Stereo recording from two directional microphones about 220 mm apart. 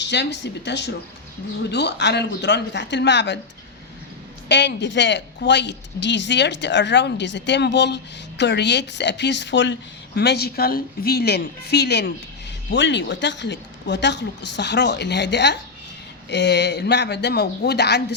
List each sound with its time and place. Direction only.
0.0 s speech: 50° left (ahead or behind)
4.4 s speech: 50° left (ahead or behind)